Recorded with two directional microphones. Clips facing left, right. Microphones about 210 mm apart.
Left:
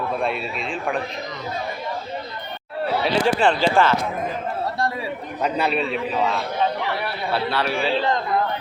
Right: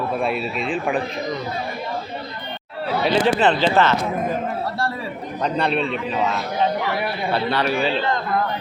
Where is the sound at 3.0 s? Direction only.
5° left (ahead or behind).